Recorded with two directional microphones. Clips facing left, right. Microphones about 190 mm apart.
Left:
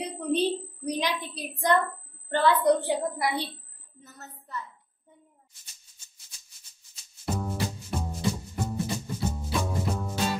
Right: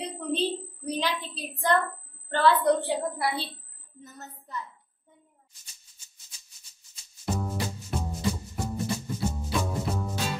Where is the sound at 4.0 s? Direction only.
15° right (ahead or behind).